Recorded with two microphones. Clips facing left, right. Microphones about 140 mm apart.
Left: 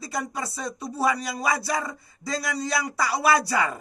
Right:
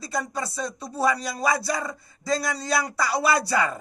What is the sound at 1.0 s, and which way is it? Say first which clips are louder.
Speech: right 1 dB; 15° left (ahead or behind).